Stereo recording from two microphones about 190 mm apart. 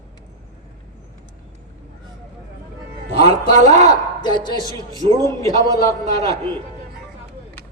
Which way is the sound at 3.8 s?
20° left (ahead or behind).